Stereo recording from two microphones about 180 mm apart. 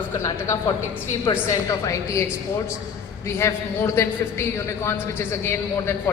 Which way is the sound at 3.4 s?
15° left (ahead or behind).